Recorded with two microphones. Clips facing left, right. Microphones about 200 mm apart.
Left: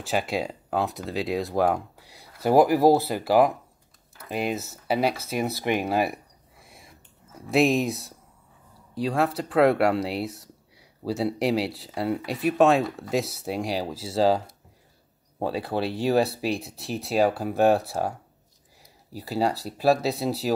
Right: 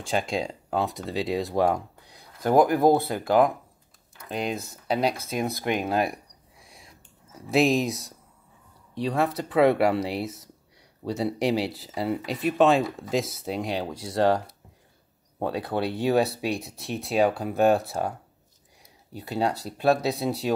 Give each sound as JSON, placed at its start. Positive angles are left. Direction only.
{"t": 0.0, "sound": "speech", "side_deg": 5}
{"t": 6.6, "sound": "a sound", "side_deg": 0}
{"t": 8.9, "sound": "speech", "side_deg": 0}